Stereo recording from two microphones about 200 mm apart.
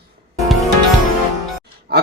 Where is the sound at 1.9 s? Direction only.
50° right (ahead or behind).